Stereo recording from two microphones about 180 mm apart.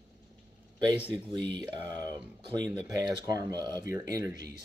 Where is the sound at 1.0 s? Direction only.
25° right (ahead or behind).